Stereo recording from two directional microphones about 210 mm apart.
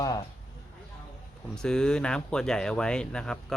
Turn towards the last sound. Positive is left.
turn(degrees=5)  # may be behind; listen again after turning